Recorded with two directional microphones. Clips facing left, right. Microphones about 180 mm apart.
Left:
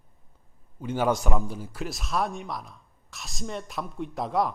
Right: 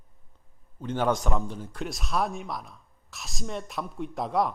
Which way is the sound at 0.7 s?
10° left (ahead or behind).